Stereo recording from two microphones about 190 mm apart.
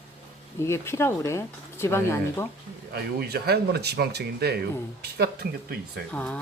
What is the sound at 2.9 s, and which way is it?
Speech, 55° right (ahead or behind).